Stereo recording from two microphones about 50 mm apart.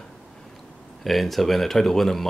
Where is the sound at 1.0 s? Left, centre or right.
Centre.